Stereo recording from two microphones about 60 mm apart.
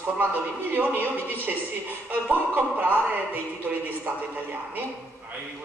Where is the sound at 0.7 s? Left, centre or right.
Right.